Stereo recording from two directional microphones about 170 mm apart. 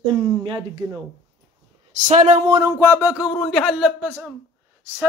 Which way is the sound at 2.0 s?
45° right (ahead or behind).